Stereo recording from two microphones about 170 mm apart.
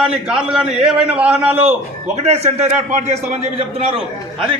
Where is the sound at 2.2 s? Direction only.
40° right (ahead or behind).